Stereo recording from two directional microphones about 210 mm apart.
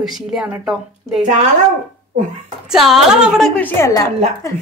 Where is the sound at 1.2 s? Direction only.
35° right (ahead or behind).